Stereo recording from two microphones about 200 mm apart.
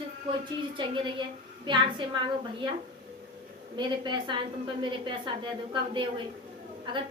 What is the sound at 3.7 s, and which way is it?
A woman's voice, 25° right (ahead or behind).